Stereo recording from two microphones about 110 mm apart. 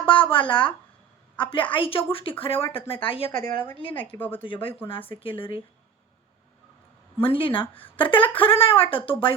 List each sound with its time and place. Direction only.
0.1 s a woman's voice: 50° left (ahead or behind)
3.4 s a woman's voice: 20° left (ahead or behind)
4.4 s speech: 50° left (ahead or behind)
7.2 s speech: 55° left (ahead or behind)